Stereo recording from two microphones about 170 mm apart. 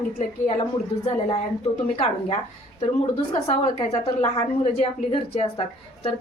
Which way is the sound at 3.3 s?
40° left (ahead or behind).